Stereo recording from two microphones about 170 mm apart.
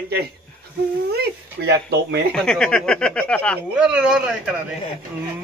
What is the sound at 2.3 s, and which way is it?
Speech, 5° left (ahead or behind).